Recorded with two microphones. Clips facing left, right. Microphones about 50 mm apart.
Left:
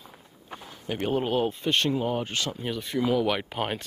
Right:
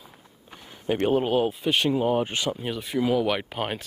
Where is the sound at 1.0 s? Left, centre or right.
Centre.